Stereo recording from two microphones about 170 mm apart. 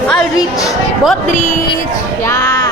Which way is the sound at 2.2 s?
20° left (ahead or behind).